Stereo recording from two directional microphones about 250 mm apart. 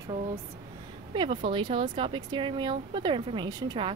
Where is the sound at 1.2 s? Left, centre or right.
Centre.